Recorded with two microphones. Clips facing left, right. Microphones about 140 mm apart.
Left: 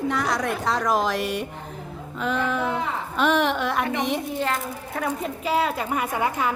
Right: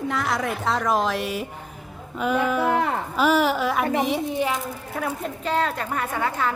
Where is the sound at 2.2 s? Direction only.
10° right (ahead or behind).